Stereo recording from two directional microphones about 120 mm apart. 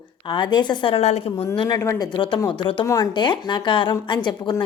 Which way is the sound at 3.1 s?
40° left (ahead or behind).